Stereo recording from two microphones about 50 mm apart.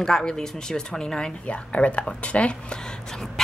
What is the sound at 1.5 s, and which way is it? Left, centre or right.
Speech, left.